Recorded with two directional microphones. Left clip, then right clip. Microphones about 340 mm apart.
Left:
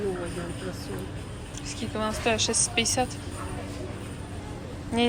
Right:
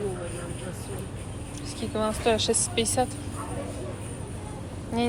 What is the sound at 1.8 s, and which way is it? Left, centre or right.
Speech, centre.